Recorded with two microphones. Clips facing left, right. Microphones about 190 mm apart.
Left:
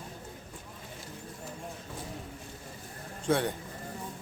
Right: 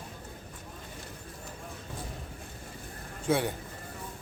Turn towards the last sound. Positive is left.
turn(degrees=-5)  # may be behind; listen again after turning